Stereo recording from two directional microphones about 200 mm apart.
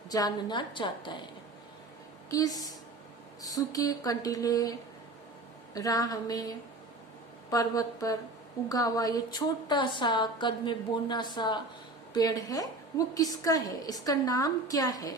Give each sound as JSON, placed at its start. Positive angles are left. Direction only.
{"t": 0.1, "sound": "a woman's voice", "side_deg": 20}
{"t": 2.3, "sound": "a woman's voice", "side_deg": 20}
{"t": 3.4, "sound": "a sound", "side_deg": 15}
{"t": 5.7, "sound": "a woman's voice", "side_deg": 20}
{"t": 7.5, "sound": "a sound", "side_deg": 20}
{"t": 8.7, "sound": "a woman's voice", "side_deg": 20}